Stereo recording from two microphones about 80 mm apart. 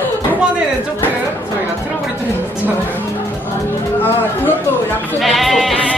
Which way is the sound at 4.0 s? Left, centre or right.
Left.